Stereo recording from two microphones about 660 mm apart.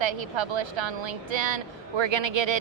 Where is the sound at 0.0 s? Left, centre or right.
Right.